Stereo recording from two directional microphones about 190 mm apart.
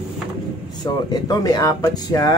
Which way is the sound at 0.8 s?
20° left (ahead or behind).